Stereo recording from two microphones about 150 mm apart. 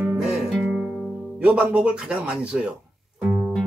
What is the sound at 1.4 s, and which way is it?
Speech, 10° right (ahead or behind).